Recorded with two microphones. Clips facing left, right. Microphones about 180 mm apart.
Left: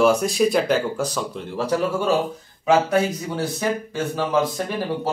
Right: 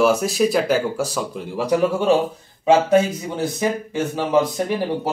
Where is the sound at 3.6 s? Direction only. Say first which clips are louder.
Right 2 dB; 15° right (ahead or behind).